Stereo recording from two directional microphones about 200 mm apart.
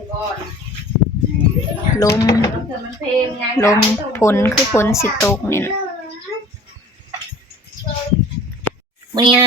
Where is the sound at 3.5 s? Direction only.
15° left (ahead or behind).